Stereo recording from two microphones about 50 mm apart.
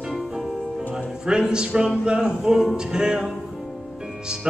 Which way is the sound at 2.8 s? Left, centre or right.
Centre.